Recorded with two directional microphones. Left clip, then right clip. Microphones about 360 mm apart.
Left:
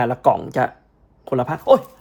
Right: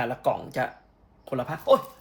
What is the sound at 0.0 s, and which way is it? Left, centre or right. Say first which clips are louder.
Speech: left 9 dB; left.